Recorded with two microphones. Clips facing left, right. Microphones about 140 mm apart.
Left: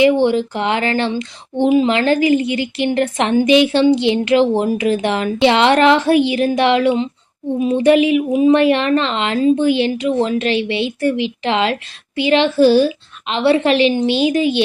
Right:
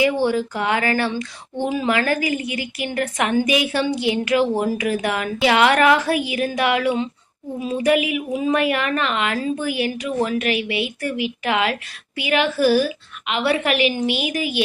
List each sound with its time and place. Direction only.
0.0 s speech: 25° left (ahead or behind)